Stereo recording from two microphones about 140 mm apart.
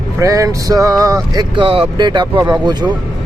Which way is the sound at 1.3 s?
35° right (ahead or behind).